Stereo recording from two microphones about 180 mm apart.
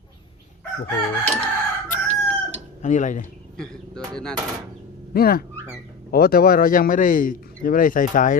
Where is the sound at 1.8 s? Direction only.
45° left (ahead or behind).